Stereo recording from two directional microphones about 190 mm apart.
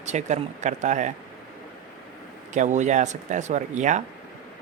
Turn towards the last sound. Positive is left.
turn(degrees=-40)  # may be behind; listen again after turning